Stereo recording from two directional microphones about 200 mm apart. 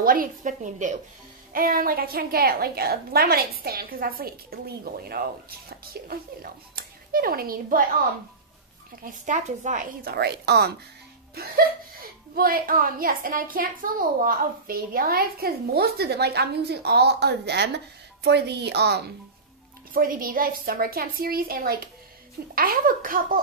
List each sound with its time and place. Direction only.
0.0 s a woman's voice: 45° right (ahead or behind)
9.0 s a woman's voice: 40° right (ahead or behind); by 19.1 s 55° right (ahead or behind)
19.9 s a woman's voice: 45° right (ahead or behind)